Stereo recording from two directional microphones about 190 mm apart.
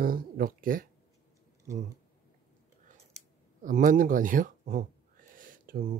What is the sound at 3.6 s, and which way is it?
Speech, 45° right (ahead or behind).